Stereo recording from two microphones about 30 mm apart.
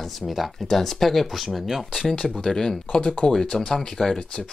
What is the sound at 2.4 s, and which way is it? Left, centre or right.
Speech, centre.